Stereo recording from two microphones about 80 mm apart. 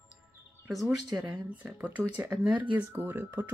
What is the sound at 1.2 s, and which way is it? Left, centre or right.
Speech, centre.